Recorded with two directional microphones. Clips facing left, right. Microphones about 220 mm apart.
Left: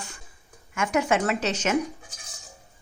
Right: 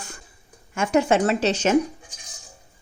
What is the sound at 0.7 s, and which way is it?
A woman's voice, 30° right (ahead or behind).